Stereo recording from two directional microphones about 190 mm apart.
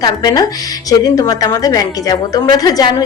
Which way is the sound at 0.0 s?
20° left (ahead or behind).